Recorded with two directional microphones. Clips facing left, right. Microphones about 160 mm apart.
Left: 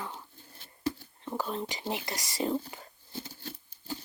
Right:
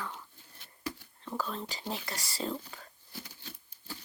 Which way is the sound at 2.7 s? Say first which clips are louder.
Left 5 dB; 25° left (ahead or behind).